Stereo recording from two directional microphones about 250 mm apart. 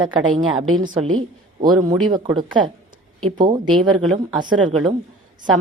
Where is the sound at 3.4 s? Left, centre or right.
Centre.